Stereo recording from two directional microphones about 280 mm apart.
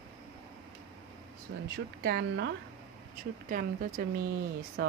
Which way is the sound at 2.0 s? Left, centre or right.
Right.